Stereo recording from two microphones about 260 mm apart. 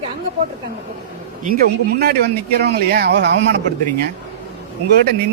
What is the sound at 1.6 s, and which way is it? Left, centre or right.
Speech, right.